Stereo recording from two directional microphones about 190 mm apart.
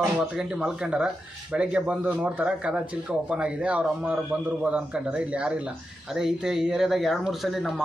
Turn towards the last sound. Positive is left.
turn(degrees=0)  # may be behind; listen again after turning